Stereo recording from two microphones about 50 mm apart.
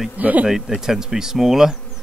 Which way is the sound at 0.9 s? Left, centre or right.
Centre.